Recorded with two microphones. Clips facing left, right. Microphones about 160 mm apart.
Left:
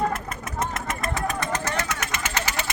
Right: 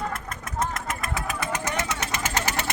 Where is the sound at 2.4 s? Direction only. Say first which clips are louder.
Right 1 dB; 50° right (ahead or behind).